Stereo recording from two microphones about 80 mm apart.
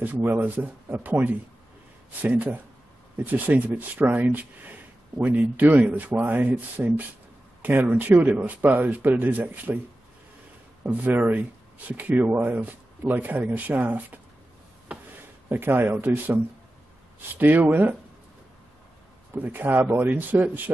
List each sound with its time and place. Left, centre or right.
0.0 s speech: right
10.9 s speech: centre
15.5 s speech: right
17.4 s speech: right
19.3 s speech: right